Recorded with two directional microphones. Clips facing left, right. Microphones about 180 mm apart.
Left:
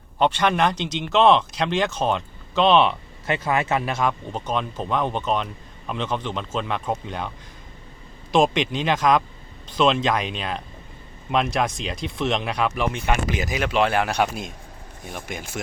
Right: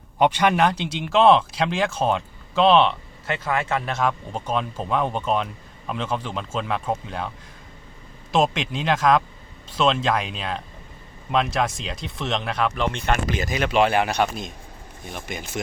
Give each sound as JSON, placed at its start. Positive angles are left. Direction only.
{"t": 0.2, "sound": "speech", "side_deg": -10}
{"t": 3.2, "sound": "speech", "side_deg": 15}
{"t": 3.9, "sound": "speech", "side_deg": 0}
{"t": 13.6, "sound": "speech", "side_deg": 0}